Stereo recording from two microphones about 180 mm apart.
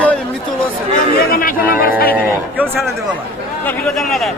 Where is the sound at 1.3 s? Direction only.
55° left (ahead or behind).